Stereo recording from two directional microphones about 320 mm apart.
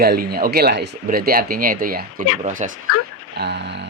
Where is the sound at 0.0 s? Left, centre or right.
Right.